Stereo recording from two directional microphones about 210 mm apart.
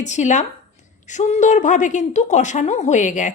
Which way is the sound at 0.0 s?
35° left (ahead or behind).